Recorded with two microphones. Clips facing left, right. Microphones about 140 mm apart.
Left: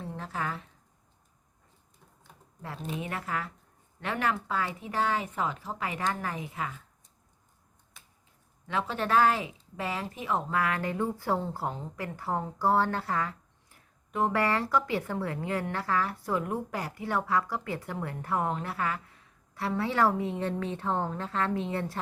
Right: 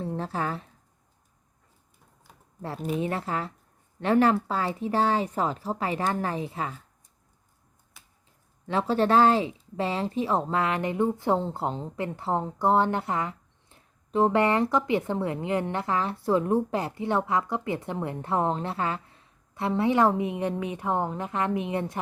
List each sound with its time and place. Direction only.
0.0 s a sound: 35° right (ahead or behind)
3.0 s speech: 30° right (ahead or behind)
8.6 s speech: 35° right (ahead or behind); by 21.9 s 20° right (ahead or behind)